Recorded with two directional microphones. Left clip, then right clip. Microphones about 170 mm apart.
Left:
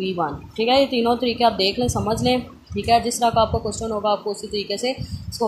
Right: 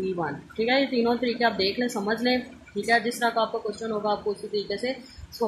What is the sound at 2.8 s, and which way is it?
Speech, 25° left (ahead or behind).